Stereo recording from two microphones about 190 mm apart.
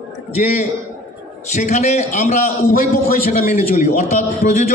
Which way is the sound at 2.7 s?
50° left (ahead or behind).